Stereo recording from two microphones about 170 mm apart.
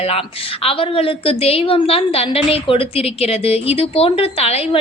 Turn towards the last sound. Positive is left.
turn(degrees=35)  # may be behind; listen again after turning